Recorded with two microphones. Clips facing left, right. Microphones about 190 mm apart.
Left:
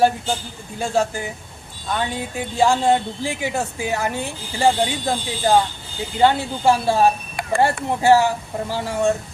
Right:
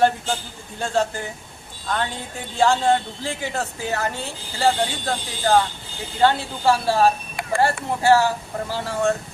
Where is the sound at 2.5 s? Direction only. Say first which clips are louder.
Left 1 dB; 10° left (ahead or behind).